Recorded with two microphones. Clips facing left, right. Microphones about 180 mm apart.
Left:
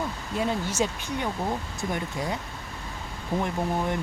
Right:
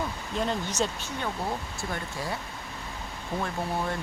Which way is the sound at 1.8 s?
20° left (ahead or behind).